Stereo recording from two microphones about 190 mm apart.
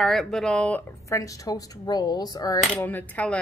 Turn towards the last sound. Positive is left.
turn(degrees=10)  # may be behind; listen again after turning